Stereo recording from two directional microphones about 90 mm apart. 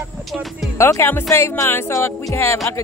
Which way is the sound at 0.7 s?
30° left (ahead or behind).